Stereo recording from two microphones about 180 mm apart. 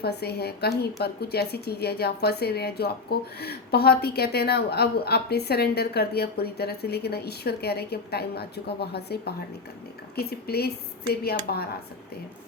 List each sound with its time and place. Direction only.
0.0 s a woman's voice: 65° left (ahead or behind)